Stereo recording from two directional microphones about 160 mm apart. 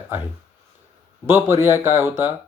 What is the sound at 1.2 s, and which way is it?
Speech, 15° right (ahead or behind).